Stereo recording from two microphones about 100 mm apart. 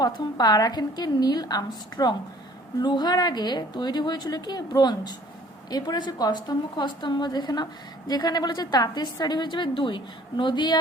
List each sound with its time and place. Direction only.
0.0 s a woman's voice: 40° left (ahead or behind)